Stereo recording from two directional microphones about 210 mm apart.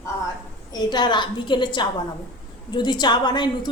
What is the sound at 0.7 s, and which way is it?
A woman's voice, 20° left (ahead or behind).